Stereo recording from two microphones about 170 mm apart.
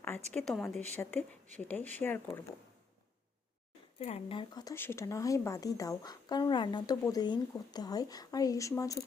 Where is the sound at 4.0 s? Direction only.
35° left (ahead or behind).